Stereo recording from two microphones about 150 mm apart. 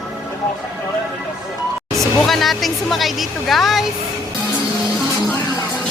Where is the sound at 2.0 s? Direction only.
Centre (ahead or behind).